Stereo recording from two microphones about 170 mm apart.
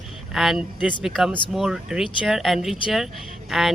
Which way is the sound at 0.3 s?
Centre (ahead or behind).